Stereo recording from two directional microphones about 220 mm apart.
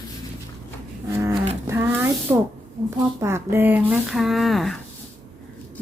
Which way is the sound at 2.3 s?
10° right (ahead or behind).